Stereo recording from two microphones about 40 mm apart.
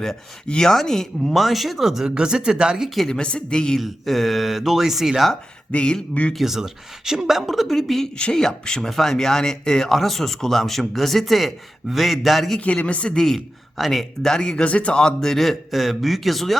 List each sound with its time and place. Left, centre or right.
0.4 s speech: left
1.3 s speech: centre
3.1 s speech: left
3.8 s a woman's voice: centre
5.7 s speech: left
6.3 s a woman's voice: centre
8.2 s speech: centre
12.5 s speech: left
13.1 s a woman's voice: centre
14.3 s speech: centre
14.6 s speech: left
15.0 s a woman's voice: centre